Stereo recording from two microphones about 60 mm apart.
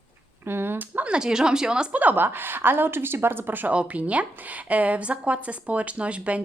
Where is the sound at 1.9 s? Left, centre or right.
Right.